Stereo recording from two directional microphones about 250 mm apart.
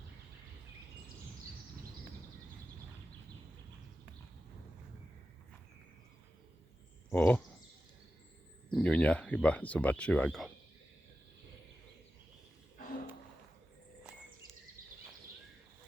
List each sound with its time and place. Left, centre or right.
7.1 s speech: centre
8.7 s speech: centre
14.8 s a sound: right